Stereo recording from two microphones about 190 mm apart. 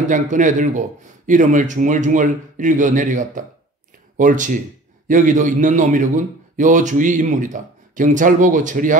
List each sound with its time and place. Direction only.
0.1 s a man's voice: 40° right (ahead or behind)